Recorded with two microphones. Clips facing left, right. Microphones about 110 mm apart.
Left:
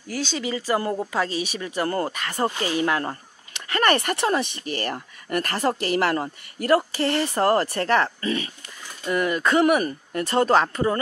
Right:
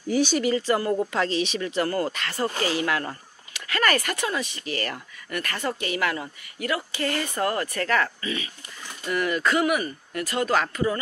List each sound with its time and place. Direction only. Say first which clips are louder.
0.1 s speech: right 6 dB; 15° right (ahead or behind)
0.4 s speech: right 3 dB; 5° left (ahead or behind)
0.7 s speech: right 1 dB; 20° left (ahead or behind)
1.1 s speech: right 1 dB; 10° left (ahead or behind)
1.8 s speech: left 1 dB; 30° left (ahead or behind)
2.0 s speech: left 2 dB; 15° left (ahead or behind); by 7.0 s 45° left (ahead or behind)
7.0 s speech: left 4 dB; 30° left (ahead or behind)
9.6 s speech: left 5 dB; 35° left (ahead or behind)